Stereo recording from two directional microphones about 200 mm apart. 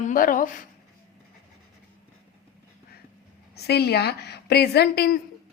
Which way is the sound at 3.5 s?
55° left (ahead or behind).